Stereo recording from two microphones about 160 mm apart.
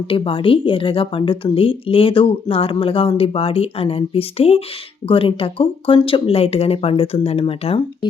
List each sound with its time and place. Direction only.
0.1 s a woman's voice: 35° left (ahead or behind)